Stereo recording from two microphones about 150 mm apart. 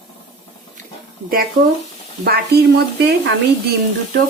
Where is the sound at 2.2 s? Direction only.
90° right.